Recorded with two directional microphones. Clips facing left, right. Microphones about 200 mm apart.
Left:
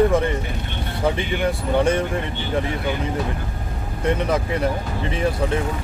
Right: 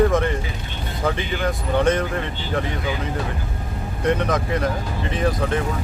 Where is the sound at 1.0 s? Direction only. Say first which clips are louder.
Left 2 dB; 10° left (ahead or behind).